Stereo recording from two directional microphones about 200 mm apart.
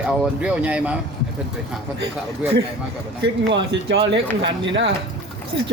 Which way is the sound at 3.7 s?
60° right (ahead or behind).